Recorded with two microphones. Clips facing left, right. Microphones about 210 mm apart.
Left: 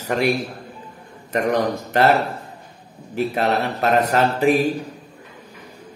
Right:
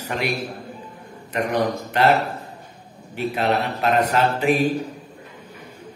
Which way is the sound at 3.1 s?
40° left (ahead or behind).